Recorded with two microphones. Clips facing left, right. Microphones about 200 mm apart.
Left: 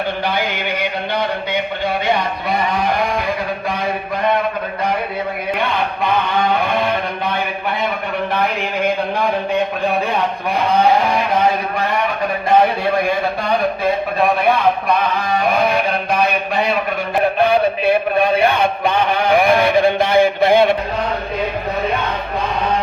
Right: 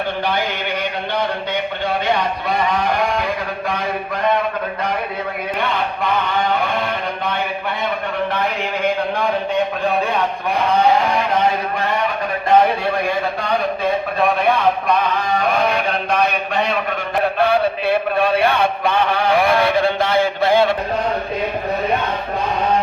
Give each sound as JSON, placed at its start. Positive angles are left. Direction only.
{"t": 16.1, "sound": "mantra", "side_deg": 10}
{"t": 17.4, "sound": "a man's voice", "side_deg": 15}
{"t": 18.9, "sound": "mantra", "side_deg": 15}